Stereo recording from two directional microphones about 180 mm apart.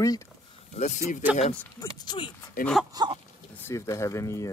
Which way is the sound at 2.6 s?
Centre (ahead or behind).